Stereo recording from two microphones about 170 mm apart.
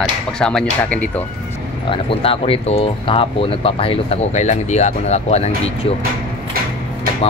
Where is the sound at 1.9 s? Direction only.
30° left (ahead or behind).